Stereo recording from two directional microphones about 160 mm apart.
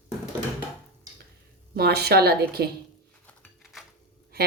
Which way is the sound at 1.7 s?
80° right.